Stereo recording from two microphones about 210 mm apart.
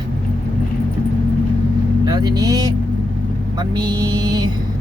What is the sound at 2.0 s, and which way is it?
Speech, 20° right (ahead or behind).